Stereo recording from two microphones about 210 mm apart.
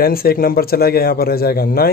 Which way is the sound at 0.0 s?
45° left (ahead or behind).